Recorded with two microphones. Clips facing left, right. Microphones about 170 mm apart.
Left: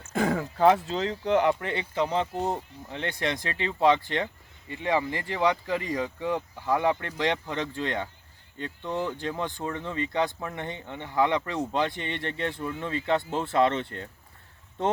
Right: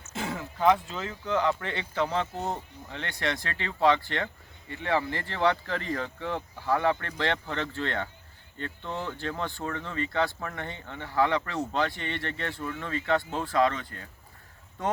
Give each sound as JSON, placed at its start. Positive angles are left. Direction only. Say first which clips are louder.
{"t": 0.1, "sound": "a sound", "louder": "left 8 dB", "side_deg": 50}
{"t": 0.9, "sound": "speech", "louder": "left 6 dB", "side_deg": 25}
{"t": 1.6, "sound": "speech", "louder": "left 2 dB", "side_deg": 15}